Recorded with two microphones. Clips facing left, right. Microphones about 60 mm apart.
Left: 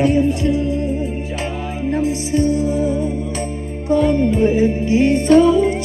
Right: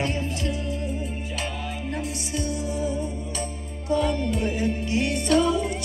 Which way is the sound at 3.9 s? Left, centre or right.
Left.